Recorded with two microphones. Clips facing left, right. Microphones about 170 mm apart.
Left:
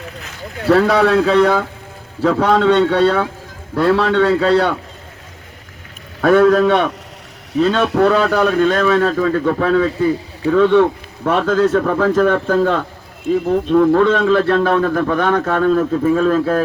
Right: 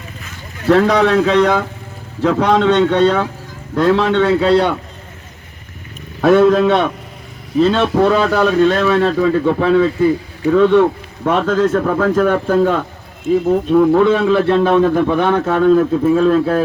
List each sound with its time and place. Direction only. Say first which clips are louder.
0.0 s a sound: left 3 dB; 65° left (ahead or behind)
0.7 s speech: right 1 dB; 5° left (ahead or behind)
4.3 s speech: right 1 dB; 15° right (ahead or behind)
6.2 s speech: right 1 dB; 5° right (ahead or behind)
15.4 s speech: right 3 dB; centre (ahead or behind)